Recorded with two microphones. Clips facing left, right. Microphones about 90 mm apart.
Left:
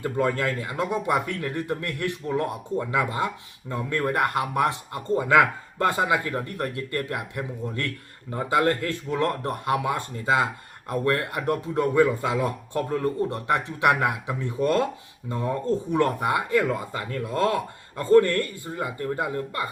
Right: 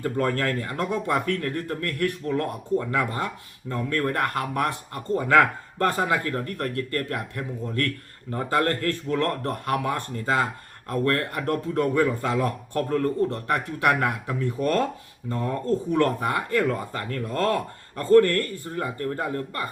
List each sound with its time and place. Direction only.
0.0 s speech: 15° left (ahead or behind)